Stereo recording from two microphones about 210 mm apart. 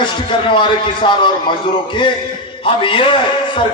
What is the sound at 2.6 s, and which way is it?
Speech, 25° left (ahead or behind).